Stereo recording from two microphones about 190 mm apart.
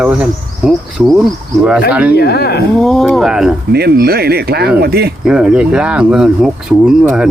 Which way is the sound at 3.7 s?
55° right (ahead or behind).